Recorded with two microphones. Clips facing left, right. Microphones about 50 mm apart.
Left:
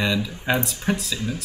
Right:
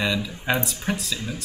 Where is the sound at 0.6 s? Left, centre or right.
Centre.